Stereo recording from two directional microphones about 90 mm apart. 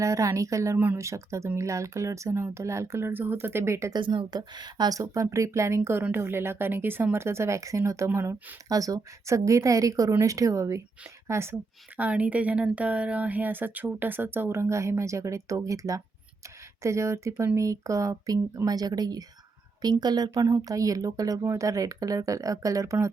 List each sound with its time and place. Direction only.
0.0 s speech: 35° right (ahead or behind)
3.9 s speech: 60° right (ahead or behind); by 8.5 s 25° right (ahead or behind)
8.7 s speech: 40° right (ahead or behind)
11.9 s a woman's voice: 15° right (ahead or behind); by 23.0 s 35° right (ahead or behind)